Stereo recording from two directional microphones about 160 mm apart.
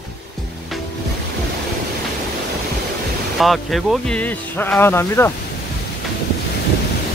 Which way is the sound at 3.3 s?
Centre (ahead or behind).